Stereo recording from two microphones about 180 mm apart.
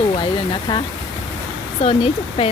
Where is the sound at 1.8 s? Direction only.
30° left (ahead or behind).